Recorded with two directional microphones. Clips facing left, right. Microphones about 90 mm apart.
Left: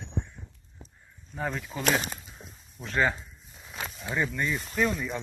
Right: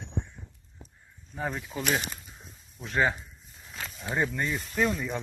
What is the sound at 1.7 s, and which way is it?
Speech, 15° left (ahead or behind).